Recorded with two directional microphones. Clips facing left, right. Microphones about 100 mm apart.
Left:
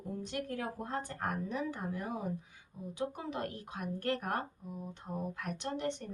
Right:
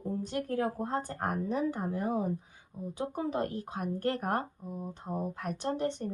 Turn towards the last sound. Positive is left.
turn(degrees=-35)  # may be behind; listen again after turning